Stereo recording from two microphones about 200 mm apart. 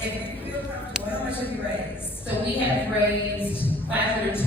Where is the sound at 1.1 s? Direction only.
10° left (ahead or behind).